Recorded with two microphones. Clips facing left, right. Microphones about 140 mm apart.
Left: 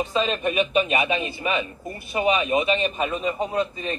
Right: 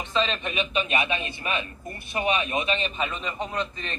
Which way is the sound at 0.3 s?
45° left (ahead or behind).